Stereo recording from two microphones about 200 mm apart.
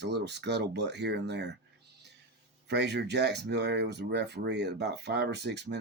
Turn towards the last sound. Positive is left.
turn(degrees=-60)  # may be behind; listen again after turning